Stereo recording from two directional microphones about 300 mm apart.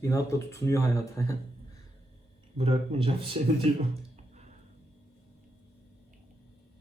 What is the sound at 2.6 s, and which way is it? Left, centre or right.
Speech, centre.